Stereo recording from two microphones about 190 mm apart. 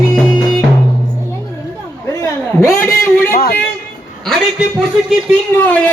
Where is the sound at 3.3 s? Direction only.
55° left (ahead or behind).